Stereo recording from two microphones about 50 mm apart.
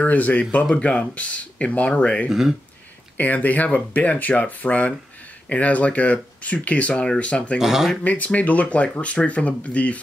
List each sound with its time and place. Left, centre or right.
0.0 s speech: left
2.2 s speech: centre
3.2 s speech: left
7.5 s speech: centre
8.0 s speech: left